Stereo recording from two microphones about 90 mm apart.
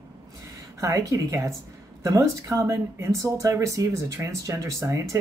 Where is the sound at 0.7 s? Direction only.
35° right (ahead or behind).